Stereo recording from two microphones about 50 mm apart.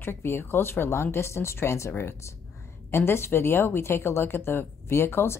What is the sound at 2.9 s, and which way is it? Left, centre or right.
A woman's voice, left.